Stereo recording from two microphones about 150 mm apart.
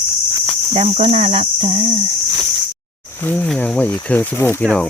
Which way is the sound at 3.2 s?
10° left (ahead or behind).